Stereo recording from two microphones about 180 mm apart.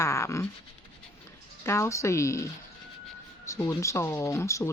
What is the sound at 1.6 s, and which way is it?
Speech, 15° left (ahead or behind).